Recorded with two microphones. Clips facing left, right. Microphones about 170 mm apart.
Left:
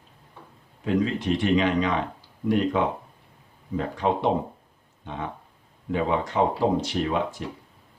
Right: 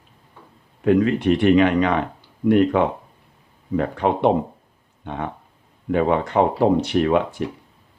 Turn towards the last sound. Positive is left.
turn(degrees=-60)  # may be behind; listen again after turning